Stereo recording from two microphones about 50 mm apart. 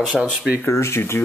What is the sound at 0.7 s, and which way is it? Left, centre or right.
Speech, left.